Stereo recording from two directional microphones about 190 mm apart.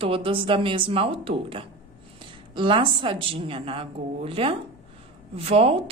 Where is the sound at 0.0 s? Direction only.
30° right (ahead or behind).